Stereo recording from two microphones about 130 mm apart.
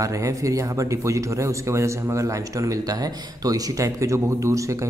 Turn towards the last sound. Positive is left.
turn(degrees=-25)  # may be behind; listen again after turning